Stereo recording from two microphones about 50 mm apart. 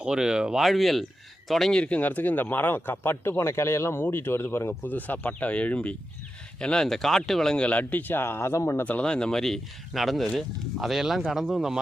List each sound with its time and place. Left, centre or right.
0.0 s speech: centre
0.6 s speech: centre
1.7 s speech: left
2.0 s speech: left
3.3 s a man's voice: left
4.8 s speech: left; by 6.8 s centre
6.8 s speech: centre
7.5 s speech: left
8.8 s speech: left
9.0 s speech: centre